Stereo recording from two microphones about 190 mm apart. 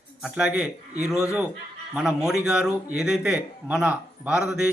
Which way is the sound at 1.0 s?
15° left (ahead or behind).